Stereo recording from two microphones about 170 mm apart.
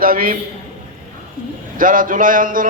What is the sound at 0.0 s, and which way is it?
Speech, 55° right (ahead or behind).